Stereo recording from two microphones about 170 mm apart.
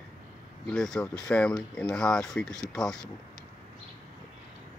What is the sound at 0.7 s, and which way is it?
Speech, 5° left (ahead or behind).